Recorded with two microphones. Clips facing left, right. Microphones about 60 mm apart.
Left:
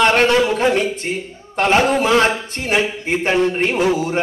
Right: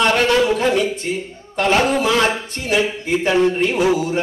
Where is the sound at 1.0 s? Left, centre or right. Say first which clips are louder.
Even; left.